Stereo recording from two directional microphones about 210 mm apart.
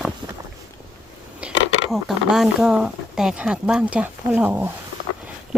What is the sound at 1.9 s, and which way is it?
Speech, centre (ahead or behind).